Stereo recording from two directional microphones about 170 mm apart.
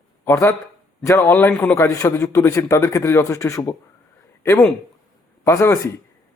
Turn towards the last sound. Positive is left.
turn(degrees=15)  # may be behind; listen again after turning